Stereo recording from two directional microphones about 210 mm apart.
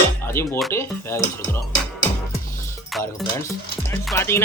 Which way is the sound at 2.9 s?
Centre (ahead or behind).